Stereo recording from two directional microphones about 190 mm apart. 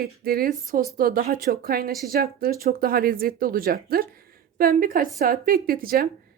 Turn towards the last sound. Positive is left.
turn(degrees=-50)  # may be behind; listen again after turning